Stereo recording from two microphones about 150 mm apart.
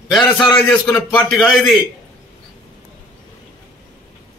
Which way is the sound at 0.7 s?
5° left (ahead or behind).